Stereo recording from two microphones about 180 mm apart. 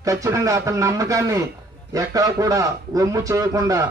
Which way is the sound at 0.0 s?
15° right (ahead or behind).